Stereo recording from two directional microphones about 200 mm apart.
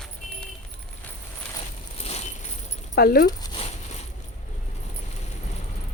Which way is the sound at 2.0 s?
30° left (ahead or behind).